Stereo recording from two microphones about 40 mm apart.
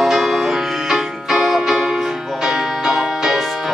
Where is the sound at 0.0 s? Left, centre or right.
Centre.